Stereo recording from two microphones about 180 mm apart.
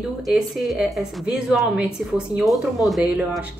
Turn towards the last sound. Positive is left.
turn(degrees=-10)  # may be behind; listen again after turning